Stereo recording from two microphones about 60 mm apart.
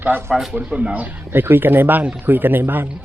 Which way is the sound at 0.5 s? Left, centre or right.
Right.